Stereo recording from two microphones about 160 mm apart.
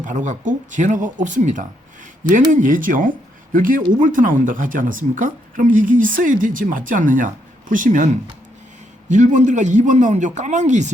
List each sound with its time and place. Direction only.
0.0 s speech: 50° right (ahead or behind)